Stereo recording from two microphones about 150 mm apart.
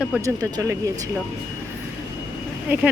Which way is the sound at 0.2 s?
25° right (ahead or behind).